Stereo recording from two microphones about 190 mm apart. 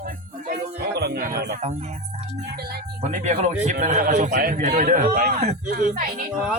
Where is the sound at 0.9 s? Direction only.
60° right (ahead or behind).